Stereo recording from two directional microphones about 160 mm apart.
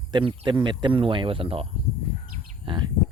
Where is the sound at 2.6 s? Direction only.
30° right (ahead or behind).